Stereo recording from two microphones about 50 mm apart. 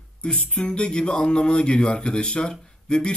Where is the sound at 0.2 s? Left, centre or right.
Centre.